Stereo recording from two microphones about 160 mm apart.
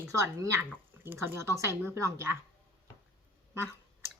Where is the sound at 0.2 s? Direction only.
15° right (ahead or behind).